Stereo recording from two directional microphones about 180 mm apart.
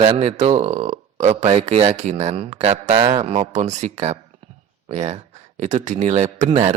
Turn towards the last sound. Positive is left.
turn(degrees=-40)  # may be behind; listen again after turning